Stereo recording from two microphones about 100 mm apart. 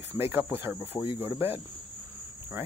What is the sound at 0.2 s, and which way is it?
Cricket, 25° right (ahead or behind).